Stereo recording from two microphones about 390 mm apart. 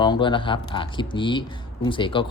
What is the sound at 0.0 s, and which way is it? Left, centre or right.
Speech, centre.